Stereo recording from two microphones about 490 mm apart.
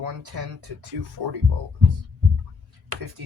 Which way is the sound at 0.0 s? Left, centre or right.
Right.